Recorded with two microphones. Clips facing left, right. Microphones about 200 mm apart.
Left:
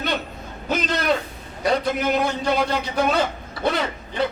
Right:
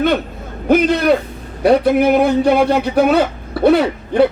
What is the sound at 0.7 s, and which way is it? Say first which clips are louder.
A man's voice: right 10 dB; 60° right (ahead or behind).